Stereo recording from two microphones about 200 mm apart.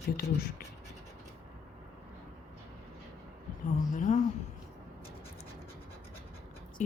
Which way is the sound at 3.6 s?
40° left (ahead or behind).